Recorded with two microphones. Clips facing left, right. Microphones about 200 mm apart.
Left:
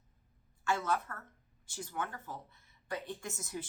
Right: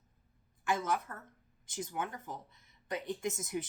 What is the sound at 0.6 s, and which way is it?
A woman's voice, 15° right (ahead or behind).